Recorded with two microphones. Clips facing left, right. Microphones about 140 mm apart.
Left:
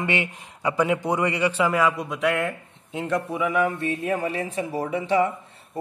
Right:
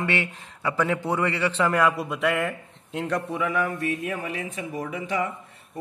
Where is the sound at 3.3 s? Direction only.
15° left (ahead or behind).